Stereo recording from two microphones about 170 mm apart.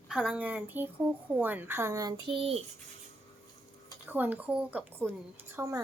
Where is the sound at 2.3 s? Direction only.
35° right (ahead or behind).